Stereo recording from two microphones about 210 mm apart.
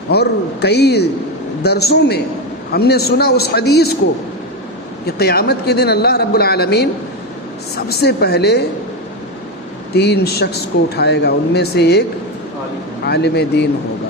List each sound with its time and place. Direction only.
0.1 s speech: 50° left (ahead or behind)
5.0 s speech: 50° left (ahead or behind)
9.9 s speech: 50° left (ahead or behind)
13.1 s speech: 50° left (ahead or behind)